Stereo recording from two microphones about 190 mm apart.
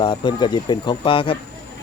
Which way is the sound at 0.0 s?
25° left (ahead or behind).